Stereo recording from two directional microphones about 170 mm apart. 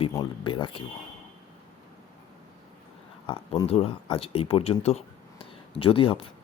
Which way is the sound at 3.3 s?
35° left (ahead or behind).